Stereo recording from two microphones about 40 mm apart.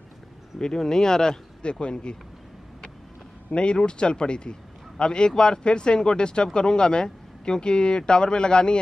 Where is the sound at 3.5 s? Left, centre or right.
Left.